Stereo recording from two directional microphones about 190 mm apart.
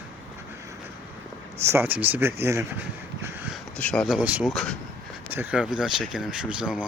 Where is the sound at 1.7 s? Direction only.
10° right (ahead or behind).